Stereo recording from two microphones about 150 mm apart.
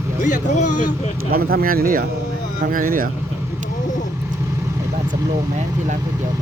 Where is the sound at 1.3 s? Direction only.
80° right.